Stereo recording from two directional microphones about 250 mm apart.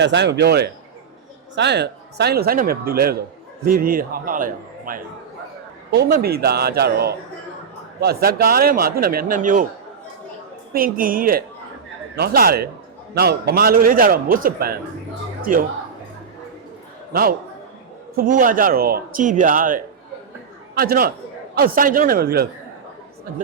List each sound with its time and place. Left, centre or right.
0.0 s a man's voice: right
10.8 s a man's voice: right
17.1 s a man's voice: right